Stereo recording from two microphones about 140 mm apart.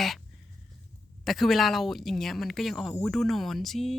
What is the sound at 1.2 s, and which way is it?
Speech, centre (ahead or behind).